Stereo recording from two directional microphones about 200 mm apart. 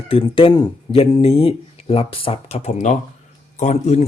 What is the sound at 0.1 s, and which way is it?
A man's voice, 25° left (ahead or behind).